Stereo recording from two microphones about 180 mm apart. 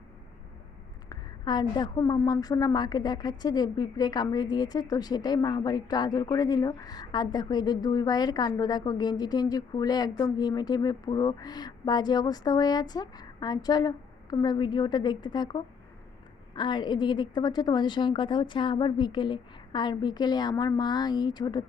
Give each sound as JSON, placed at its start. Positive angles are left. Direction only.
{"t": 1.1, "sound": "a woman's voice", "side_deg": 20}